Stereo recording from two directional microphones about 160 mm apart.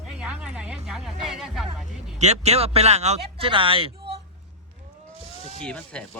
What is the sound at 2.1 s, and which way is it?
Speech, 45° right (ahead or behind).